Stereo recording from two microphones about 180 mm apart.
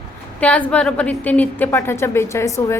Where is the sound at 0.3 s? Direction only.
5° left (ahead or behind).